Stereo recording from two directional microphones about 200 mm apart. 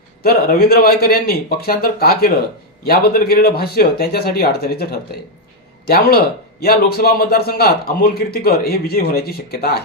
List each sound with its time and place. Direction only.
0.2 s speech: 50° left (ahead or behind)